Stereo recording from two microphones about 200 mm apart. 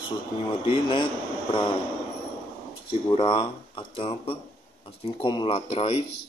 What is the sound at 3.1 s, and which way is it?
Speech, 25° left (ahead or behind).